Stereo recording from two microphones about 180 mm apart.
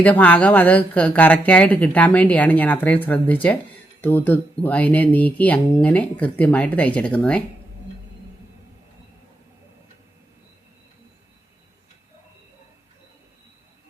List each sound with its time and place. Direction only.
0.0 s speech: 10° left (ahead or behind)